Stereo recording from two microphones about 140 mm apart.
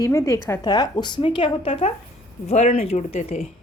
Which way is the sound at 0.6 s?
30° left (ahead or behind).